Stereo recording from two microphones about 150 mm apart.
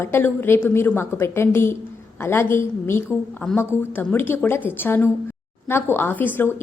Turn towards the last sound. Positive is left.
turn(degrees=15)  # may be behind; listen again after turning